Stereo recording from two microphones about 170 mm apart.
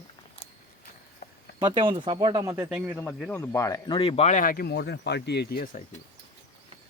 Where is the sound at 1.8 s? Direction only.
30° right (ahead or behind).